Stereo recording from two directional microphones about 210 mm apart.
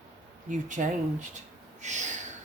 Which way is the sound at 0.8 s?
35° right (ahead or behind).